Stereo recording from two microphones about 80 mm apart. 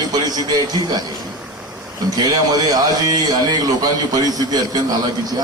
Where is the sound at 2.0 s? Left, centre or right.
Right.